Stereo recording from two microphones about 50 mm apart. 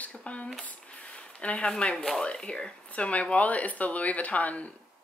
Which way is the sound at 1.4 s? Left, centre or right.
Left.